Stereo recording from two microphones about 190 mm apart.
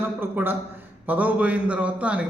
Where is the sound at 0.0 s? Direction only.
10° right (ahead or behind).